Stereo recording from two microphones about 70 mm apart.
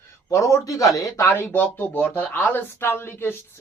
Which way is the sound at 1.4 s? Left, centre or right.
Left.